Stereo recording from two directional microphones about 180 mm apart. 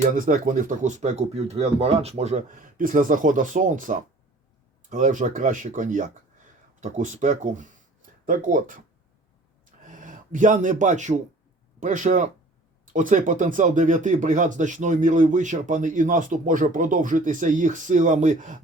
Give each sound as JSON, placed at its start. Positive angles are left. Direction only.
{"t": 0.1, "sound": "speech", "side_deg": -50}
{"t": 9.8, "sound": "speech", "side_deg": -45}